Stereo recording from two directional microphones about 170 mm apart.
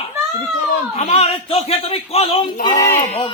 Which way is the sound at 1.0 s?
35° left (ahead or behind).